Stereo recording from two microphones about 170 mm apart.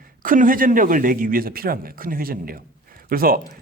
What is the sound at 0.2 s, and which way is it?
A man's voice, 55° right (ahead or behind).